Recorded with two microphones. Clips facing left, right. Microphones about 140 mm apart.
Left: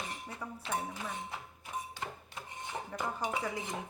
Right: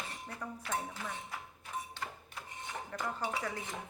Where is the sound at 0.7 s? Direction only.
15° left (ahead or behind).